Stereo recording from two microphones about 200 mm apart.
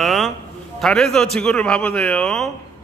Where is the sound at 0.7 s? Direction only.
Centre (ahead or behind).